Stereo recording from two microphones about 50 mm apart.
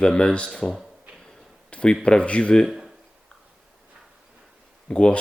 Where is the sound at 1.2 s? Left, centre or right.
Left.